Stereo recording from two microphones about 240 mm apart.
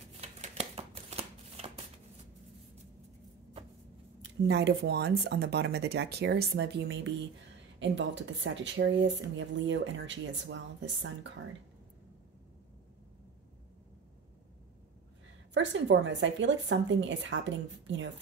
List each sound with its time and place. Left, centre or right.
0.2 s shuffling cards: right
4.2 s speech: right
15.5 s speech: right